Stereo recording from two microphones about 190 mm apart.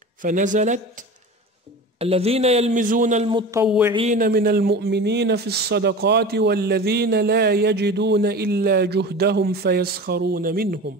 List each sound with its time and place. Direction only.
0.2 s speech: 45° right (ahead or behind)
2.0 s a man's voice: 30° right (ahead or behind)
3.3 s speech: 25° right (ahead or behind)
3.6 s a sound: 5° right (ahead or behind)
3.9 s a man's voice: 30° right (ahead or behind)
4.2 s speech: 50° right (ahead or behind)